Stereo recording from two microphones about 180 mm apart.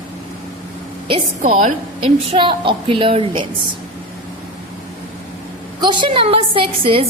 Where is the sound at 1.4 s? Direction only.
45° right (ahead or behind).